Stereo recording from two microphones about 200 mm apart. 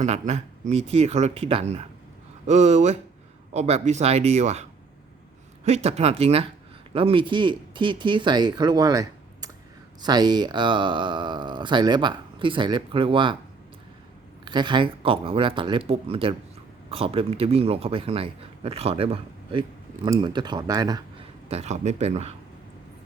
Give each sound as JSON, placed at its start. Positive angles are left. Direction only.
{"t": 0.0, "sound": "speech", "side_deg": -35}
{"t": 5.6, "sound": "speech", "side_deg": -35}
{"t": 14.4, "sound": "speech", "side_deg": -20}
{"t": 21.5, "sound": "speech", "side_deg": -35}